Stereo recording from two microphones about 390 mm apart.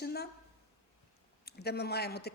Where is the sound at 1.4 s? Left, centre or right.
Left.